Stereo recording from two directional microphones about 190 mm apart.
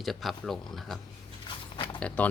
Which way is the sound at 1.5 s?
25° left (ahead or behind).